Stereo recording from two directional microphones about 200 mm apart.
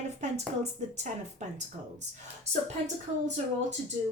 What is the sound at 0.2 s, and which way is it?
Speech, 35° right (ahead or behind).